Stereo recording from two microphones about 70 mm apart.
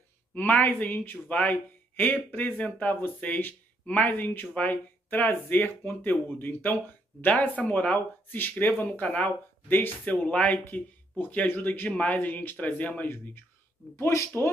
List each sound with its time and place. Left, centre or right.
0.3 s speech: left
10.1 s speech: centre
13.9 s speech: left